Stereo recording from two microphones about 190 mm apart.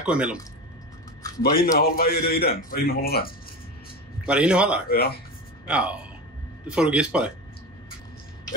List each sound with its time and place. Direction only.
0.0 s speech: 5° right (ahead or behind)
1.4 s a man's voice: 50° left (ahead or behind)
4.3 s speech: 5° right (ahead or behind)
4.8 s speech: 55° left (ahead or behind)
5.7 s speech: 5° right (ahead or behind)